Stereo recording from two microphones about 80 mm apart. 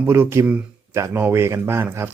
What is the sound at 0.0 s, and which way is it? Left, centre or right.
Speech, right.